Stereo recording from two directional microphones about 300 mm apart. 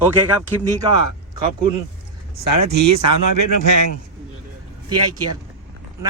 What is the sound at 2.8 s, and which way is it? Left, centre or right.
Speech, right.